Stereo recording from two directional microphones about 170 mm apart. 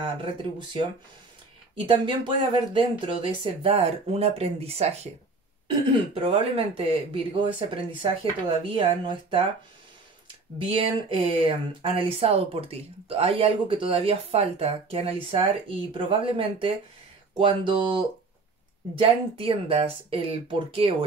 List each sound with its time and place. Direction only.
0.2 s speech: 30° right (ahead or behind)
1.9 s speech: 30° right (ahead or behind)
6.1 s speech: 30° right (ahead or behind)
10.7 s speech: 30° right (ahead or behind)